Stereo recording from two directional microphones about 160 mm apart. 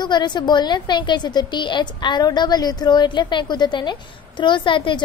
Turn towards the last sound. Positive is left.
turn(degrees=30)  # may be behind; listen again after turning